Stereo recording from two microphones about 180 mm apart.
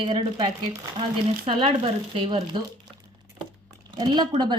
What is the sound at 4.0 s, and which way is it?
Speech, 25° right (ahead or behind).